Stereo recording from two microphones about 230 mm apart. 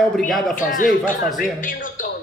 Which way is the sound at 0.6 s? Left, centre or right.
Left.